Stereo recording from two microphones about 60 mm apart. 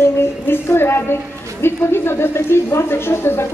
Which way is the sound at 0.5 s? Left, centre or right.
Left.